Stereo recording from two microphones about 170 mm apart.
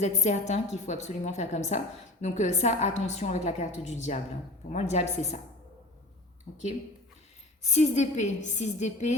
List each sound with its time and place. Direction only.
0.2 s a woman's voice: 45° left (ahead or behind)
7.6 s a woman's voice: 45° left (ahead or behind)